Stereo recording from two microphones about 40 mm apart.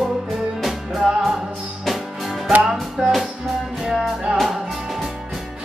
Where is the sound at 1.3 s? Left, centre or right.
Centre.